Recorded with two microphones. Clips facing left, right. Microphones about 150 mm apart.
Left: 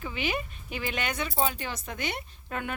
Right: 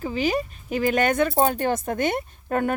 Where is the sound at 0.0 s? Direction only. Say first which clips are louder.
Right 8 dB; 40° right (ahead or behind).